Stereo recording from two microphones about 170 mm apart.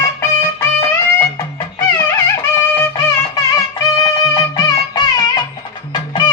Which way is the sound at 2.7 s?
20° left (ahead or behind).